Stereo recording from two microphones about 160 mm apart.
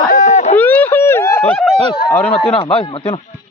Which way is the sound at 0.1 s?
50° left (ahead or behind).